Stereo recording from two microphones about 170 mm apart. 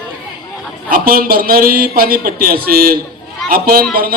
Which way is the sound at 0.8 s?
60° right (ahead or behind).